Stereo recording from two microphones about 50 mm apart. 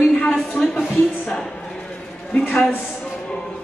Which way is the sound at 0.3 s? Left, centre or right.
Centre.